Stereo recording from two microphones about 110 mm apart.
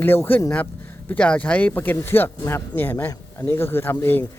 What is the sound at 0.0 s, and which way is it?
Speech, 20° left (ahead or behind).